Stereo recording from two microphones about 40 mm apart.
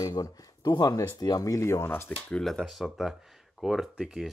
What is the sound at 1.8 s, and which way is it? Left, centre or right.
Speech, left.